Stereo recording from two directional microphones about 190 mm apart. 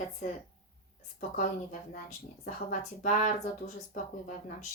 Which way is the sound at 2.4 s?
45° left (ahead or behind).